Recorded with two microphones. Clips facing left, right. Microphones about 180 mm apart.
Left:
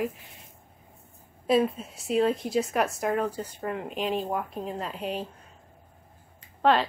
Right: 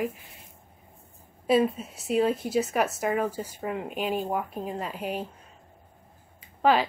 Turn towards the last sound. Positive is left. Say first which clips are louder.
# even
turn(degrees=-5)  # may be behind; listen again after turning